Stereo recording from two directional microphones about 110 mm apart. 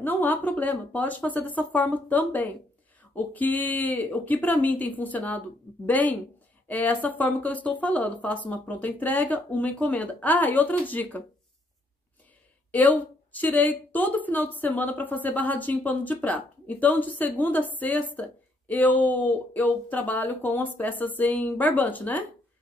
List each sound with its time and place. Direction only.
0.0 s a woman's voice: 15° left (ahead or behind)
12.7 s a woman's voice: 15° left (ahead or behind)